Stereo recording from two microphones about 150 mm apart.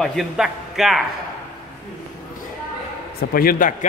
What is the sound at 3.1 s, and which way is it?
Speech, 75° left (ahead or behind).